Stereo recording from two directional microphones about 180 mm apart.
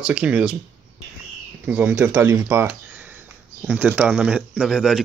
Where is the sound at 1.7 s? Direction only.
10° right (ahead or behind).